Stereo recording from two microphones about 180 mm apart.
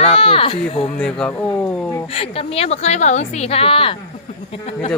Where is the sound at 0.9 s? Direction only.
5° left (ahead or behind).